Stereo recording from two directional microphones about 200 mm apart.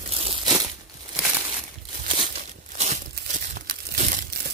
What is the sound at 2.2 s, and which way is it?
Crumpling, 35° right (ahead or behind).